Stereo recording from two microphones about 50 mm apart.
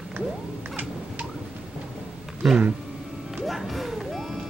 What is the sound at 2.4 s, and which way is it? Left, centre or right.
Speech, centre.